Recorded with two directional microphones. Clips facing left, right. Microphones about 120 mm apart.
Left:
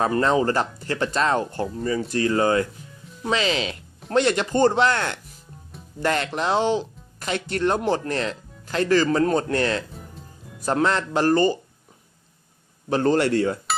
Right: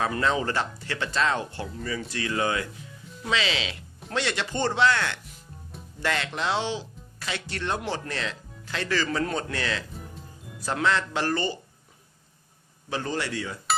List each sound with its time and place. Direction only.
0.0 s speech: 35° left (ahead or behind)
12.9 s speech: 50° left (ahead or behind)